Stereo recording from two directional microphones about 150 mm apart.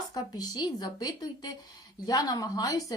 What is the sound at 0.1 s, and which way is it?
Speech, 25° left (ahead or behind).